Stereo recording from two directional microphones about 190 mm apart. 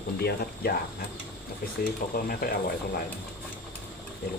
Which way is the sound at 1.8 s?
50° left (ahead or behind).